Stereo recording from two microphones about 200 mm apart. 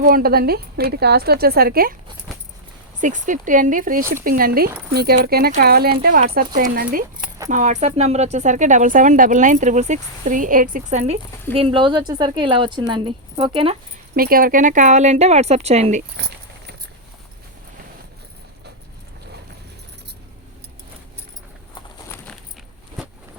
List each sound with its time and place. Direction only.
0.0 s a woman's voice: 45° right (ahead or behind)
3.0 s a woman's voice: 40° right (ahead or behind)
14.2 s speech: 45° right (ahead or behind)